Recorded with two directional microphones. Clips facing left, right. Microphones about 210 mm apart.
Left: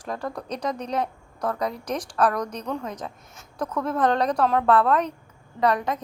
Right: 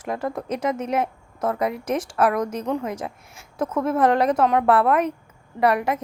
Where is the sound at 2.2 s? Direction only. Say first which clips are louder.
Right 1 dB; 15° right (ahead or behind).